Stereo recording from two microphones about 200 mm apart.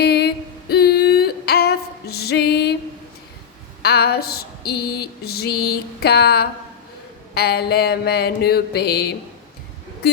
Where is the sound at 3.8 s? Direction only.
55° left (ahead or behind).